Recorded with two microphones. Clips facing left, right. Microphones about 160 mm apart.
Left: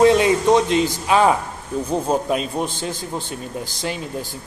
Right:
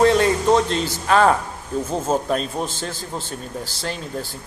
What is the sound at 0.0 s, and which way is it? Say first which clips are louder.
A man's voice: left 2 dB; 15° left (ahead or behind).